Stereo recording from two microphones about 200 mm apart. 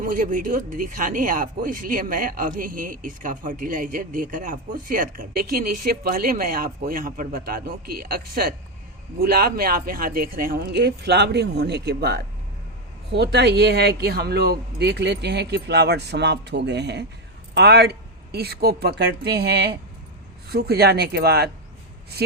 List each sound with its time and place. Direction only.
0.0 s speech: 40° right (ahead or behind)